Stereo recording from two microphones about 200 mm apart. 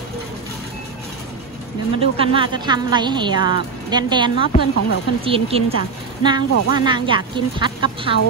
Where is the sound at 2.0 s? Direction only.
30° right (ahead or behind).